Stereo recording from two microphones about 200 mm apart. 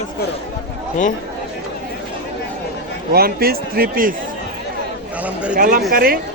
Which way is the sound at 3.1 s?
50° right (ahead or behind).